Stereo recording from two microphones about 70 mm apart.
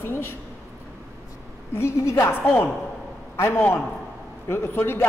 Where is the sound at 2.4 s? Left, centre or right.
Left.